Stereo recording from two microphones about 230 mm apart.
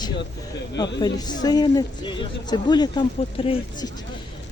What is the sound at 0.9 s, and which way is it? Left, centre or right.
A man's voice, centre.